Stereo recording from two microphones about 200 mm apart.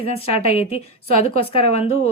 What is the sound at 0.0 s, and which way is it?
Speech, 30° left (ahead or behind).